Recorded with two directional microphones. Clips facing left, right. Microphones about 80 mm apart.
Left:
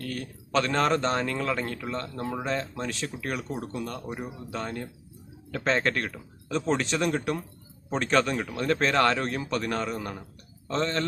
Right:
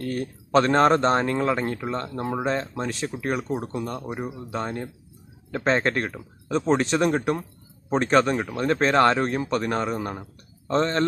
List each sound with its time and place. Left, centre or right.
0.0 s a man's voice: right